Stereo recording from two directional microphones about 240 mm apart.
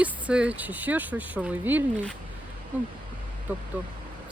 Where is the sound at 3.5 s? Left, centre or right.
Centre.